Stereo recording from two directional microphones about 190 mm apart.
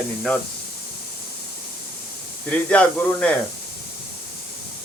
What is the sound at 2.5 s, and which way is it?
Speech, 5° left (ahead or behind).